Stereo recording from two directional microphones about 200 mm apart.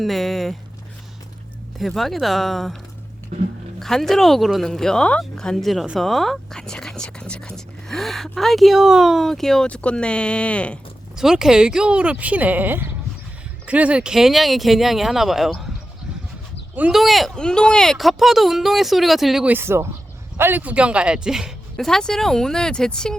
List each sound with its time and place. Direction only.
0.0 s speech: centre (ahead or behind)
1.8 s speech: centre (ahead or behind)
3.8 s speech: centre (ahead or behind)
16.7 s speech: 5° right (ahead or behind)